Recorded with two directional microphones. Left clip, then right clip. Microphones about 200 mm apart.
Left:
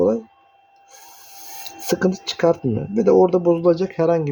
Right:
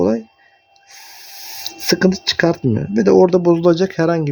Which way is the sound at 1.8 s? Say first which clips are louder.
Right 5 dB; 45° right (ahead or behind).